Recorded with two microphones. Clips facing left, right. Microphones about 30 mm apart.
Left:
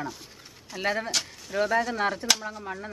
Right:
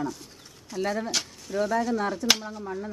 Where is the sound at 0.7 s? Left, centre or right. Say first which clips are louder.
Even; left.